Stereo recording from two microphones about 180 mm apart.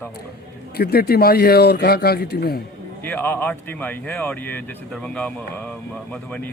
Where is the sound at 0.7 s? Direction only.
60° left (ahead or behind).